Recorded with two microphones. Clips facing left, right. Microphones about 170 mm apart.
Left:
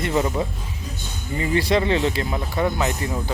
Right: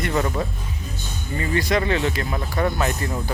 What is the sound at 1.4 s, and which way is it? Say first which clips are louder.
Speech: left 2 dB; 25° left (ahead or behind).